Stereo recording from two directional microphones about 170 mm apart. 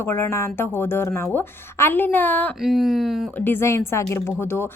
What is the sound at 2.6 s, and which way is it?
Speech, centre (ahead or behind).